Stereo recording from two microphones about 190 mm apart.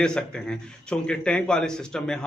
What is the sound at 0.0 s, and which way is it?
A man's voice, 5° left (ahead or behind).